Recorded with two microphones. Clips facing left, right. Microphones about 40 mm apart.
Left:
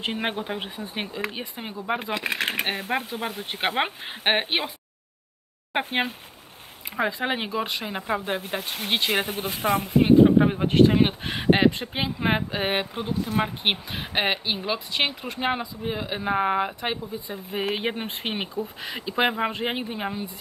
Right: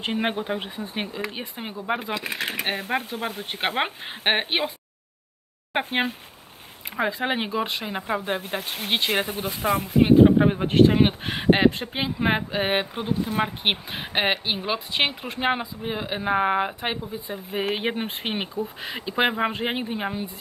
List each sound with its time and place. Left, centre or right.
0.0 s speech: centre
2.1 s speech: left
2.6 s speech: centre
5.7 s speech: centre
9.4 s speech: left
10.0 s speech: centre